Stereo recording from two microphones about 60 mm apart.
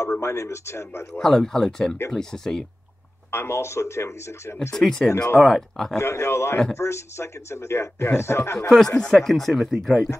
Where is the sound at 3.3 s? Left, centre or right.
Left.